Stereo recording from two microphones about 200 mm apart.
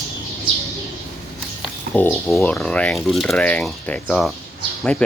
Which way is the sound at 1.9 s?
5° left (ahead or behind).